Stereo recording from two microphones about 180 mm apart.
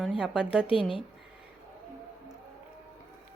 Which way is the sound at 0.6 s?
30° left (ahead or behind).